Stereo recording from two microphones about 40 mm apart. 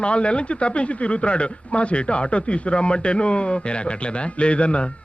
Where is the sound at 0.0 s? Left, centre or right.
Left.